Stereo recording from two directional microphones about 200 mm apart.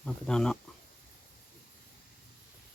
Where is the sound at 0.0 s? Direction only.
5° left (ahead or behind).